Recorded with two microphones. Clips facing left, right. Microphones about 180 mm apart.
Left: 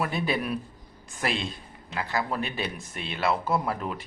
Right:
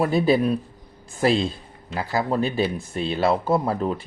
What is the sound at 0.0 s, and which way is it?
Speech, 35° right (ahead or behind).